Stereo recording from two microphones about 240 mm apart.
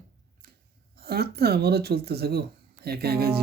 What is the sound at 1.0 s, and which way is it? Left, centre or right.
Speech, right.